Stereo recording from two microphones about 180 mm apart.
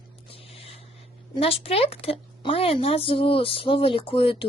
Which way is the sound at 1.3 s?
30° left (ahead or behind).